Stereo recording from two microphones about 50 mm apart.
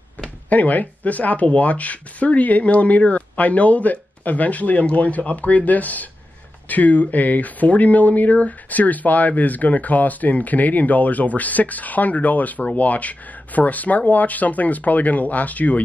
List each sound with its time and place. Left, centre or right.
0.5 s speech: left